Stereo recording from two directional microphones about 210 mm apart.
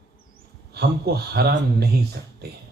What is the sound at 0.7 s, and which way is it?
Speech, 50° right (ahead or behind).